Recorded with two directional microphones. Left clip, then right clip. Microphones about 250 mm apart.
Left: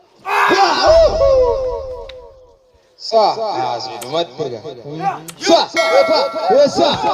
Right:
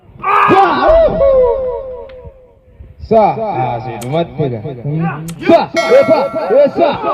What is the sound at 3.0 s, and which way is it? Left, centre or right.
Speech, right.